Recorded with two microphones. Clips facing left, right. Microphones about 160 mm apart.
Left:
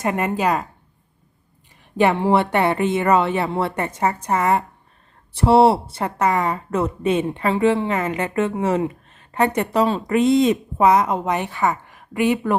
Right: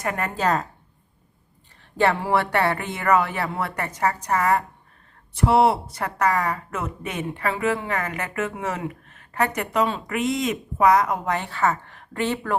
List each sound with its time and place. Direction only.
0.0 s speech: 20° left (ahead or behind)
2.0 s speech: 20° left (ahead or behind)